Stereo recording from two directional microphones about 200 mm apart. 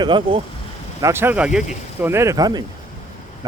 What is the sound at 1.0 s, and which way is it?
Speech, 10° right (ahead or behind).